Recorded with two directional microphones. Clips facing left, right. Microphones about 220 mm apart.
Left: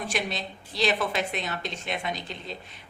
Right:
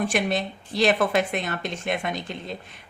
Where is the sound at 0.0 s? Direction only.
50° right (ahead or behind).